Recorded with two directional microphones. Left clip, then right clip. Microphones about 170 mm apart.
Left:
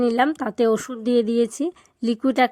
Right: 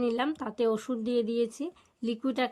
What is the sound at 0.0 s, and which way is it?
Speech, 35° left (ahead or behind).